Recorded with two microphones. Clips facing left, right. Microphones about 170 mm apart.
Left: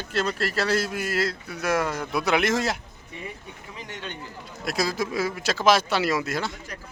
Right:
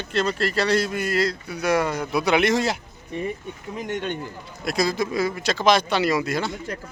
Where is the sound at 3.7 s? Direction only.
50° right (ahead or behind).